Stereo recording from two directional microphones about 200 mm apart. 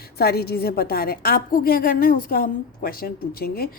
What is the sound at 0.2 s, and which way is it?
A woman's voice, 50° left (ahead or behind).